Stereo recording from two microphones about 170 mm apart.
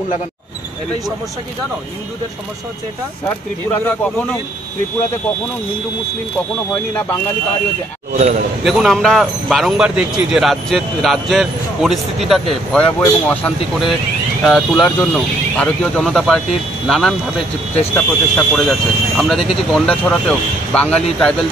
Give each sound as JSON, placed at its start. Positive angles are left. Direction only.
{"t": 4.0, "sound": "speech", "side_deg": 10}
{"t": 8.1, "sound": "a man's voice", "side_deg": -40}
{"t": 8.6, "sound": "speech", "side_deg": 0}